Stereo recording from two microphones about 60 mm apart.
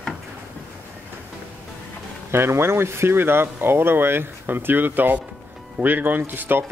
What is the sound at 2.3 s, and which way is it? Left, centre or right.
Speech, right.